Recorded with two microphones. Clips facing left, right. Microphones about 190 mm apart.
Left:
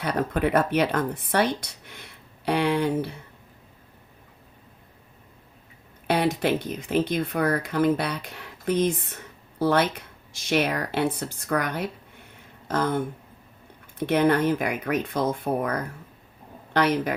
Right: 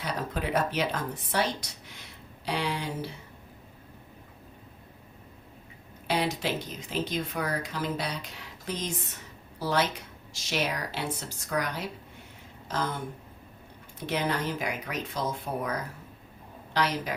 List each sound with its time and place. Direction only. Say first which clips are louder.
0.0 s speech: left 8 dB; 60° left (ahead or behind)
6.1 s speech: left 6 dB; 55° left (ahead or behind)
14.1 s speech: left 9 dB; 55° left (ahead or behind)